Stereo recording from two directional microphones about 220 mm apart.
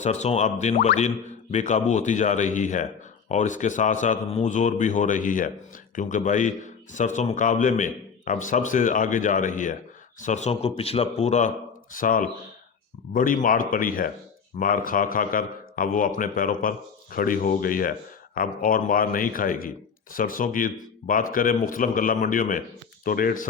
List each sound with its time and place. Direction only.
0.0 s speech: 30° left (ahead or behind)